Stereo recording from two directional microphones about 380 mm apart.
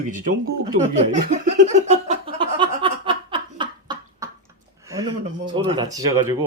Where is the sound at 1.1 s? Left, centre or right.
Centre.